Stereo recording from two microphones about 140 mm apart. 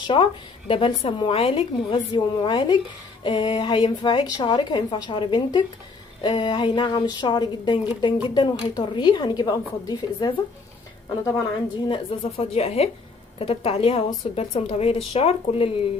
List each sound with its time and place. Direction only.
0.0 s a woman's voice: 35° left (ahead or behind)
11.9 s a woman's voice: 45° left (ahead or behind)